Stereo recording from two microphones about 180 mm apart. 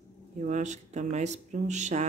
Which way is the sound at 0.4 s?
45° right (ahead or behind).